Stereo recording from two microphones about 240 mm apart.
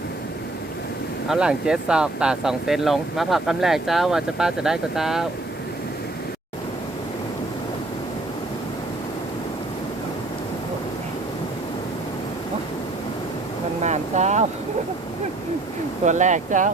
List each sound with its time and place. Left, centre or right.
1.3 s speech: centre
13.8 s boat: right
16.0 s speech: right